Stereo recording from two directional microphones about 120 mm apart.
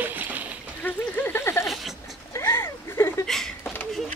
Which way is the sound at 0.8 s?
15° left (ahead or behind).